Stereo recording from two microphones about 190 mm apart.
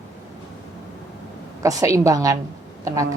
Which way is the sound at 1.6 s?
15° right (ahead or behind).